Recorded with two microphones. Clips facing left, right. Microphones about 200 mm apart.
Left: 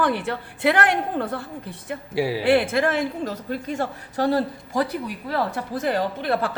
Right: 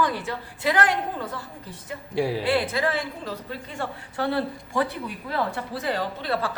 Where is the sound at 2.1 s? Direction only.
5° left (ahead or behind).